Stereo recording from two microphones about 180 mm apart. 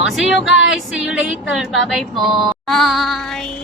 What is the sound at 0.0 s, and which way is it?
Female singing, centre (ahead or behind).